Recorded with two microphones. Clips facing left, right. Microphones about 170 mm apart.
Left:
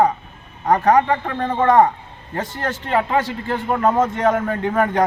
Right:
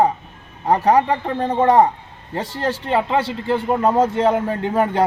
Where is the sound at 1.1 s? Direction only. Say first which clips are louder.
Right 1 dB; 20° right (ahead or behind).